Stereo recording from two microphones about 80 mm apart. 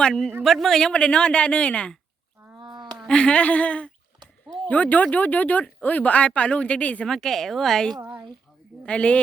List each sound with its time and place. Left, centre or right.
0.0 s speech: centre
2.6 s a sound: right
3.1 s speech: centre
7.1 s speech: centre